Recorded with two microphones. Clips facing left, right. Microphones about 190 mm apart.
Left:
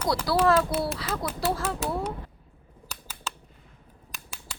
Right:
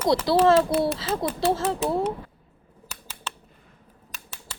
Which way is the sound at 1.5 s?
25° right (ahead or behind).